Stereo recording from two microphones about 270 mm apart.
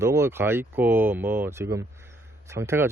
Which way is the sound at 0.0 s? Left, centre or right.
Centre.